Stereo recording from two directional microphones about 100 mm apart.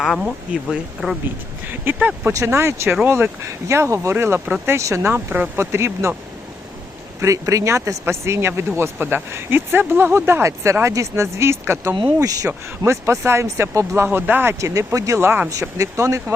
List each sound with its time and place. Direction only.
0.2 s speech: 10° right (ahead or behind)
1.8 s speech: 15° right (ahead or behind)
2.3 s speech: 30° right (ahead or behind)
7.2 s speech: 30° right (ahead or behind)
14.6 s speech: 30° right (ahead or behind)